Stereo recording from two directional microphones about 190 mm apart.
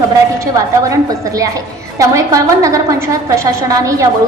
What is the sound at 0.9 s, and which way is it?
A woman's voice, 20° right (ahead or behind).